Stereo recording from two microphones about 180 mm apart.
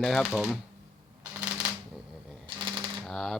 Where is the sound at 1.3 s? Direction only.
20° right (ahead or behind).